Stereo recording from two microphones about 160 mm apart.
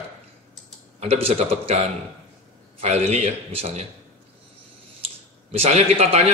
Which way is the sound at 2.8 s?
40° right (ahead or behind).